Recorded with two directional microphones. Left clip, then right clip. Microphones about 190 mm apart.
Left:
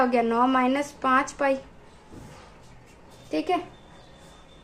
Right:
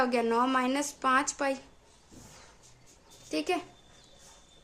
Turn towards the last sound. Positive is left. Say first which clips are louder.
# left 5 dB
turn(degrees=-35)  # may be behind; listen again after turning